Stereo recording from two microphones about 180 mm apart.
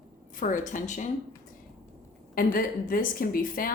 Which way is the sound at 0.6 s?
45° left (ahead or behind).